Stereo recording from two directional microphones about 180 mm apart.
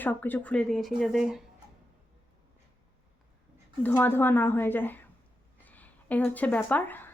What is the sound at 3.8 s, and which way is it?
Speech, 10° left (ahead or behind).